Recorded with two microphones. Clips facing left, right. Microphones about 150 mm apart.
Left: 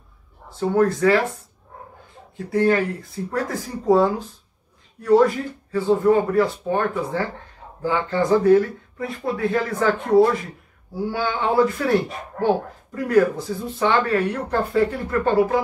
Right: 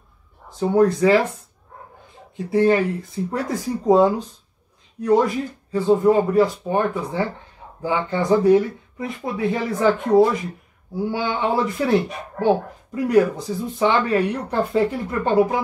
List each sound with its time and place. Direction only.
0.5 s speech: 20° right (ahead or behind)
2.3 s speech: 20° right (ahead or behind)